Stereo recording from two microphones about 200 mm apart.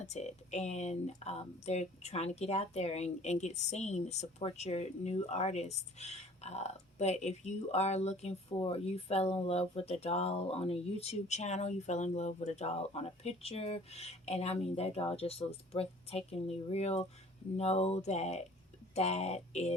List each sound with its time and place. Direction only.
0.0 s speech: 35° left (ahead or behind)